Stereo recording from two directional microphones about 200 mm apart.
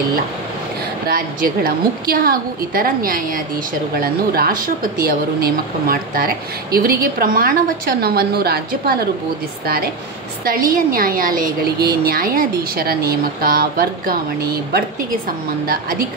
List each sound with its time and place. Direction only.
1.0 s a woman's voice: 50° right (ahead or behind)
10.4 s a woman's voice: 45° right (ahead or behind)